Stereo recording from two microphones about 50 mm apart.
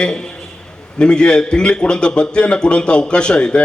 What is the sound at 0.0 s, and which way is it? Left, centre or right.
A man's voice, centre.